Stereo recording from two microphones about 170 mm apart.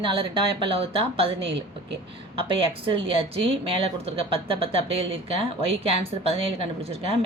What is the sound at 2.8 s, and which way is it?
Speech, 30° right (ahead or behind).